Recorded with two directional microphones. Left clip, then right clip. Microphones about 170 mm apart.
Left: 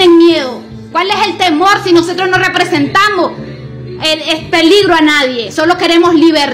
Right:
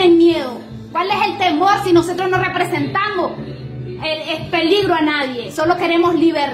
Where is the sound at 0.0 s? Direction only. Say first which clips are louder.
Left 6 dB; 15° left (ahead or behind).